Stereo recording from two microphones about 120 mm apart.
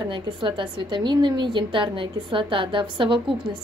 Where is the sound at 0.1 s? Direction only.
45° right (ahead or behind).